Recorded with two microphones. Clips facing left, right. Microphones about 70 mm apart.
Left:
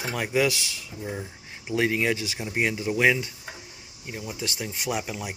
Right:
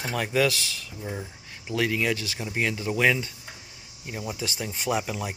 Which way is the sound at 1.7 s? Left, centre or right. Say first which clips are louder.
Left 1 dB; left.